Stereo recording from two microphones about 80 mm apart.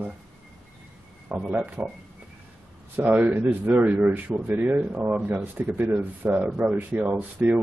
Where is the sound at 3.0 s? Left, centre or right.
Right.